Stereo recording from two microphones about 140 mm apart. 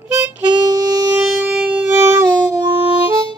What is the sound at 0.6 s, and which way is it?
Harmonica, 30° right (ahead or behind).